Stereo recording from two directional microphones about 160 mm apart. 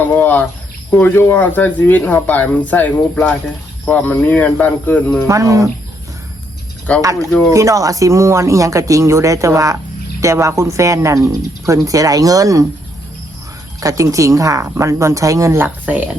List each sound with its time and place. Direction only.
0.0 s speech: 10° left (ahead or behind)
5.3 s speech: 20° right (ahead or behind)
6.9 s speech: 10° left (ahead or behind)
7.5 s speech: 20° right (ahead or behind)
13.8 s speech: 20° right (ahead or behind)